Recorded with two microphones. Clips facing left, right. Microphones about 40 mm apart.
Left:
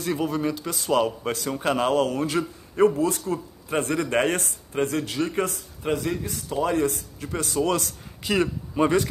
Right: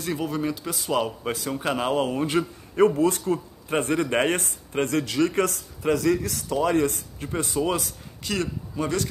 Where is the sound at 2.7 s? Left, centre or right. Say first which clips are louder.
Right 1 dB; right.